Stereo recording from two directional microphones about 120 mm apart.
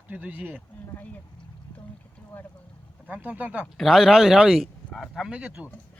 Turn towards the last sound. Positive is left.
turn(degrees=-10)  # may be behind; listen again after turning